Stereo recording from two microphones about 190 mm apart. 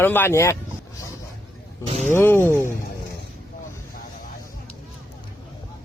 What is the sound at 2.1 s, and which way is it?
Speech, 10° left (ahead or behind).